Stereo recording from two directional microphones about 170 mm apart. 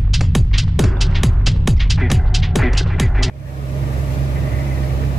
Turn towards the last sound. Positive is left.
turn(degrees=0)  # may be behind; listen again after turning